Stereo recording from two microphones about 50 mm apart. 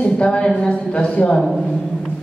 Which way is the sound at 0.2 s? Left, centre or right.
Centre.